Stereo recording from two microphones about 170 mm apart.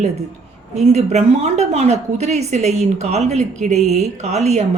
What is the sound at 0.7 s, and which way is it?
A woman's voice, 40° right (ahead or behind).